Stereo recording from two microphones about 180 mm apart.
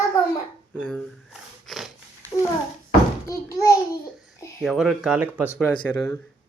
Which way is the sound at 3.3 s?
20° left (ahead or behind).